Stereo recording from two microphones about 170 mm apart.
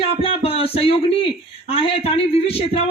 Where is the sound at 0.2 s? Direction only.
35° left (ahead or behind).